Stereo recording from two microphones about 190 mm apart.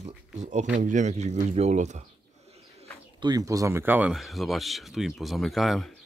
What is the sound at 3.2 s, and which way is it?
Speech, 20° right (ahead or behind).